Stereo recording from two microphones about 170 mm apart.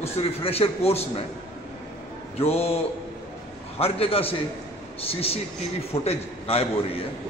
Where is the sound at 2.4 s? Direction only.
35° left (ahead or behind).